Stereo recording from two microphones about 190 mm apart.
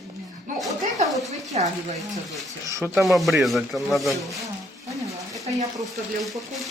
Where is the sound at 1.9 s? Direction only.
Centre (ahead or behind).